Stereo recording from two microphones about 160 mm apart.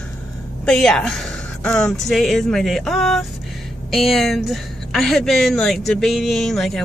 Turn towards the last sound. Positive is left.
turn(degrees=0)  # may be behind; listen again after turning